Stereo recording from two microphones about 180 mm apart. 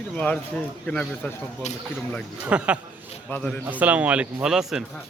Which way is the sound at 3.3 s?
5° left (ahead or behind).